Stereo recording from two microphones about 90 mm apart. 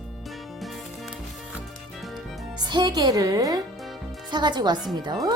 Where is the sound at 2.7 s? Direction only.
55° right (ahead or behind).